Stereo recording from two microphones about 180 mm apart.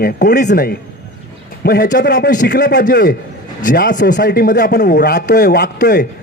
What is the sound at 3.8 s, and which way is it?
A man's voice, 70° left (ahead or behind).